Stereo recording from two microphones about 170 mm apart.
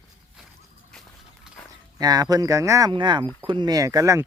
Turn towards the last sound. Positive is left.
turn(degrees=-20)  # may be behind; listen again after turning